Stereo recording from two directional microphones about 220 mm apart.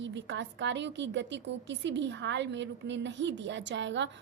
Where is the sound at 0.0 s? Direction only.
55° right (ahead or behind).